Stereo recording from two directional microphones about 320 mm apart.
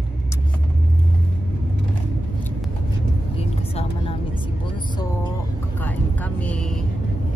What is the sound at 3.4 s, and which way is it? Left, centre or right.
Speech, centre.